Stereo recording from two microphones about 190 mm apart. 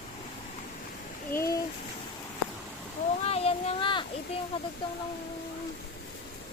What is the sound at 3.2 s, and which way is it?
Speech, 30° left (ahead or behind).